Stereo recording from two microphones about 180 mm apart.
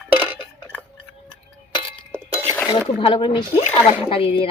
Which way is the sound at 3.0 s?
30° left (ahead or behind).